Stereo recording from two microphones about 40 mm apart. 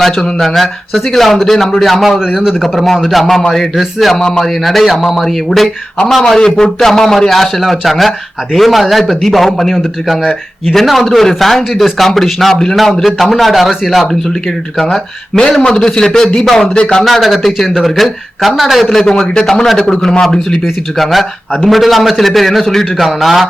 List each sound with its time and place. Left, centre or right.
0.0 s a man's voice: centre
2.1 s a man's voice: centre
3.1 s a man's voice: centre
4.1 s a man's voice: centre
4.4 s a man's voice: centre
10.7 s a man's voice: centre
15.6 s a man's voice: centre
17.1 s a man's voice: centre
19.0 s a man's voice: centre
21.0 s a man's voice: centre